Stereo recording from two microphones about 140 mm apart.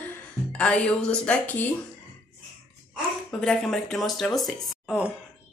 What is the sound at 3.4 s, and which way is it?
A woman's voice, 5° left (ahead or behind).